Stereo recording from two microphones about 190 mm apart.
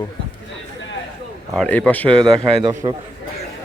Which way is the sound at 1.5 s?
5° left (ahead or behind).